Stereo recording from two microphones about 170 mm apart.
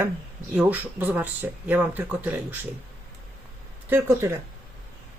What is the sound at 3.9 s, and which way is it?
Speech, 15° right (ahead or behind).